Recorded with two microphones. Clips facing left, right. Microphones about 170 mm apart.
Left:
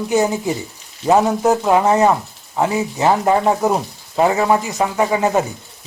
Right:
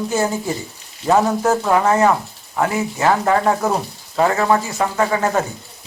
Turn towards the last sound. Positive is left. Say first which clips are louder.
# left 2 dB
turn(degrees=15)  # may be behind; listen again after turning